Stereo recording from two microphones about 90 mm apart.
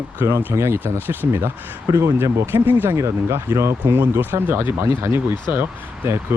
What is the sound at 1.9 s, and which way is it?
Speech, 35° right (ahead or behind).